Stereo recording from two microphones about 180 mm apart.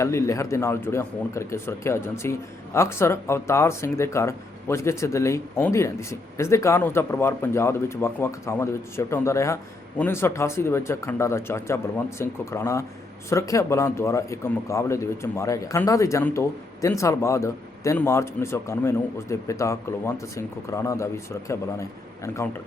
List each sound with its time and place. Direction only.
0.0 s a man's voice: 15° left (ahead or behind)